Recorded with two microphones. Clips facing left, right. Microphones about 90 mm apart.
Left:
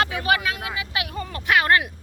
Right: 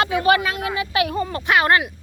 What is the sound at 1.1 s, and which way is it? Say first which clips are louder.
Speech: left 1 dB; 25° right (ahead or behind).